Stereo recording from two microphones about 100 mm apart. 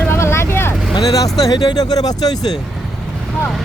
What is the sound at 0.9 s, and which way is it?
Speech, 40° left (ahead or behind).